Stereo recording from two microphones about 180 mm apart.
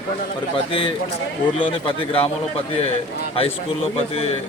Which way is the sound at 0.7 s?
30° left (ahead or behind).